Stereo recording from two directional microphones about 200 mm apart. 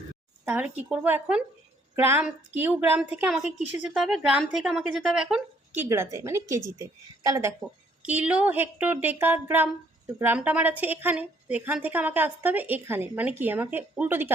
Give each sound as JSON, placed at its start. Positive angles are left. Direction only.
{"t": 0.4, "sound": "a woman's voice", "side_deg": -10}
{"t": 5.9, "sound": "a woman's voice", "side_deg": -15}
{"t": 8.0, "sound": "a woman's voice", "side_deg": -5}